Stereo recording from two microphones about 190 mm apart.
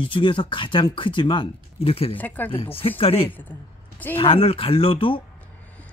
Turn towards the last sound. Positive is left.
turn(degrees=25)  # may be behind; listen again after turning